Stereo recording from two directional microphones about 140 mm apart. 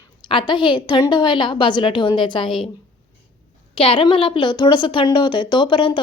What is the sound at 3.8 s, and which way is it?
A woman's voice, 40° left (ahead or behind).